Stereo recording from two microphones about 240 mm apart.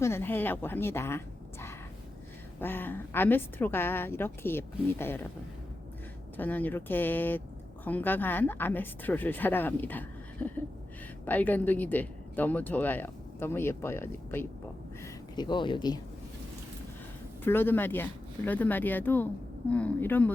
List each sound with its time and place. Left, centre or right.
0.0 s speech: centre
2.6 s speech: centre
6.3 s speech: centre
17.4 s speech: centre